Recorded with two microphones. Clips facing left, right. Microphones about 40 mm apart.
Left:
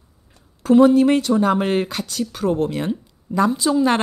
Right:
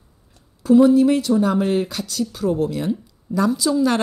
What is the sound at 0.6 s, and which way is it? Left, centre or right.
Speech, left.